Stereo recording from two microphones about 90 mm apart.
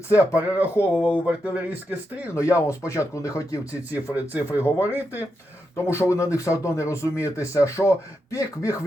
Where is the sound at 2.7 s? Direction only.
35° left (ahead or behind).